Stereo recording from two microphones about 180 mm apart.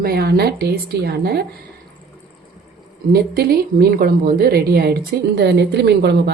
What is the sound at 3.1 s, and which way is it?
A woman's voice, 60° right (ahead or behind).